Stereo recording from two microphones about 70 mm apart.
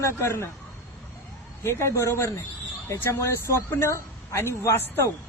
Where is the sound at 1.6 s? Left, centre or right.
Left.